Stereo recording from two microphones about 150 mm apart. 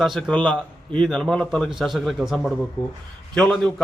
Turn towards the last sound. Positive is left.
turn(degrees=5)  # may be behind; listen again after turning